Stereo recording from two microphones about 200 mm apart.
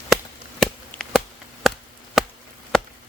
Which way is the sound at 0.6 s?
Centre (ahead or behind).